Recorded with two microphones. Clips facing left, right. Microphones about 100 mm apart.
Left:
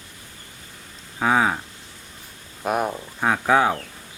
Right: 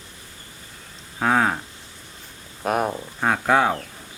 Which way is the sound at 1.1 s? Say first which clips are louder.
Even; centre (ahead or behind).